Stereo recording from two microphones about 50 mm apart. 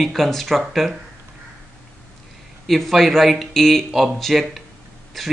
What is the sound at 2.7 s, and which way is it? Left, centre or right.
Speech, centre.